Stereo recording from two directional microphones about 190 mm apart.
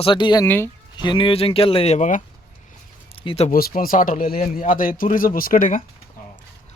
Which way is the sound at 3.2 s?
35° left (ahead or behind).